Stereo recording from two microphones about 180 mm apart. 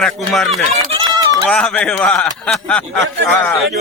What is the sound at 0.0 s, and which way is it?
Speech, centre (ahead or behind).